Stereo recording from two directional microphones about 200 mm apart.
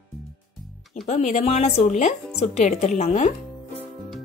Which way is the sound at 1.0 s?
35° left (ahead or behind).